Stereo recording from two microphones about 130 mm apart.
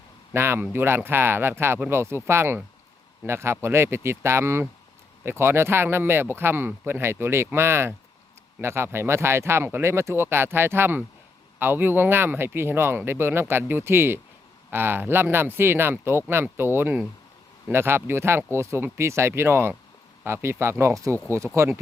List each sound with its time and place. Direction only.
0.3 s speech: 20° right (ahead or behind)